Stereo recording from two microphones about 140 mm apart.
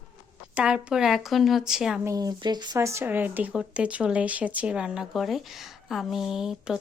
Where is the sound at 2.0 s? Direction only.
25° right (ahead or behind).